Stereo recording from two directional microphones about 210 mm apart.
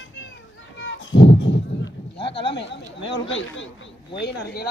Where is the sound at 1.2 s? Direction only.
55° left (ahead or behind).